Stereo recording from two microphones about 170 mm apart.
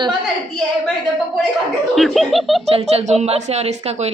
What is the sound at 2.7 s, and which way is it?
A woman's voice, 45° right (ahead or behind).